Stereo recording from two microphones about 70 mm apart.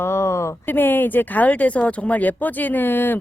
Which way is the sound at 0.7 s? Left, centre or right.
Left.